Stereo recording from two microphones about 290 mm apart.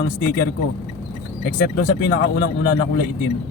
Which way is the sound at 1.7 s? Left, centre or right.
Left.